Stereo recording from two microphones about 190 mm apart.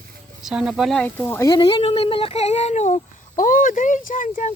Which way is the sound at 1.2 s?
15° left (ahead or behind).